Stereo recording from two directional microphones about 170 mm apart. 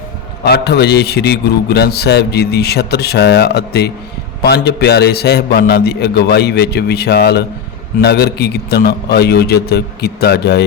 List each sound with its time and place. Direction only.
0.4 s a man's voice: 70° left (ahead or behind)